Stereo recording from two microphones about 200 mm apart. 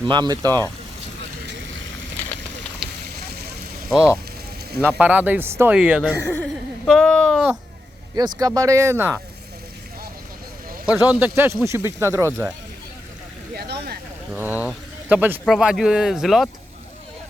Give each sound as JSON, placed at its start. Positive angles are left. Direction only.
{"t": 0.0, "sound": "speech", "side_deg": -20}
{"t": 2.8, "sound": "fire", "side_deg": 0}
{"t": 3.8, "sound": "speech", "side_deg": -5}
{"t": 6.2, "sound": "a sound", "side_deg": 10}
{"t": 8.1, "sound": "speech", "side_deg": -20}
{"t": 10.8, "sound": "speech", "side_deg": -5}
{"t": 13.5, "sound": "a sound", "side_deg": -50}
{"t": 14.3, "sound": "speech", "side_deg": -10}